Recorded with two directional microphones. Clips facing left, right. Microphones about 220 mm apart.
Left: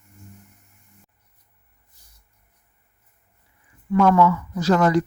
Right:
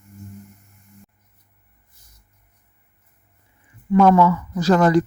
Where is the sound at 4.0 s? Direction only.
30° right (ahead or behind).